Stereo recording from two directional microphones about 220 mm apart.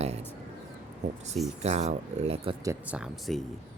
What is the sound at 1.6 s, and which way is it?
Speech, 30° right (ahead or behind).